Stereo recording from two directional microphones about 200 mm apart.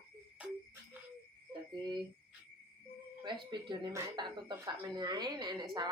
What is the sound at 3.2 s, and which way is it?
Speech, 25° right (ahead or behind).